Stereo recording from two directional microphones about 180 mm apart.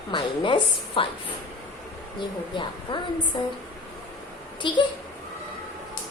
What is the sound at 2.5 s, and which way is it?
Speech, 25° left (ahead or behind).